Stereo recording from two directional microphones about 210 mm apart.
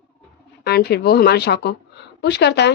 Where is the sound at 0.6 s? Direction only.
50° left (ahead or behind).